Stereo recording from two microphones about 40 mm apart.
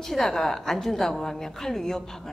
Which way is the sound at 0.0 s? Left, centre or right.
Centre.